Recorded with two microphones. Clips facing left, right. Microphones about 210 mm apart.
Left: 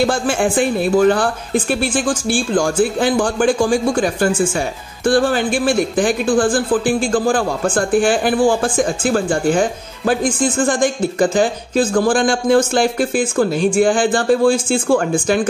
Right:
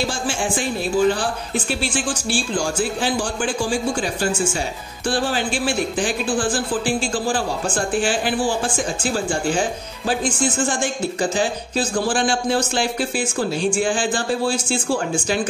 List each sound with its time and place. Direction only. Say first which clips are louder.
0.0 s speech: left 8 dB; 55° left (ahead or behind)